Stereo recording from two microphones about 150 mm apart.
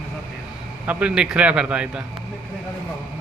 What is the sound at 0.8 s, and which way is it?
A man's voice, 10° right (ahead or behind).